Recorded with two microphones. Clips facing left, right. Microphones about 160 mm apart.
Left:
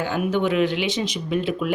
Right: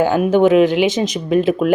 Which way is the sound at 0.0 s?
45° right (ahead or behind).